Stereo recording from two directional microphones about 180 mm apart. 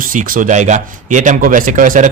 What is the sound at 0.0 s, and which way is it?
A man's voice, 50° right (ahead or behind).